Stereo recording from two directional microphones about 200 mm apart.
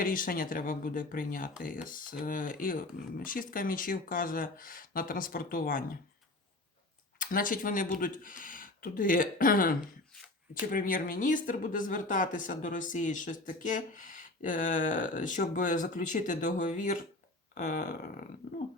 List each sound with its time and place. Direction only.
0.0 s speech: 45° left (ahead or behind)
7.2 s speech: 45° left (ahead or behind)